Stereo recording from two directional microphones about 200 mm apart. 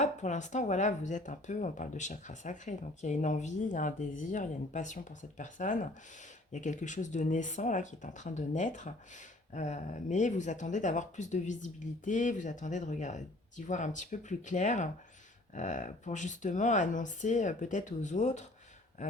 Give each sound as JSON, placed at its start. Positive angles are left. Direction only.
{"t": 0.0, "sound": "speech", "side_deg": 35}